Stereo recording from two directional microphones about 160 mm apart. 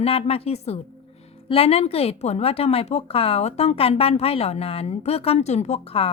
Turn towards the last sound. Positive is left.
turn(degrees=40)  # may be behind; listen again after turning